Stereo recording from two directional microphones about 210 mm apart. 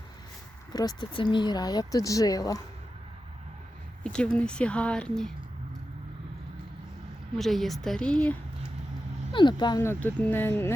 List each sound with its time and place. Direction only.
0.7 s speech: 20° left (ahead or behind)
4.0 s speech: 5° left (ahead or behind)
7.3 s speech: centre (ahead or behind)
9.3 s speech: 20° left (ahead or behind)